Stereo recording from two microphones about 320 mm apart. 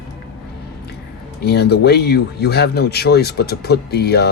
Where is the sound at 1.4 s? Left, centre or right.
Left.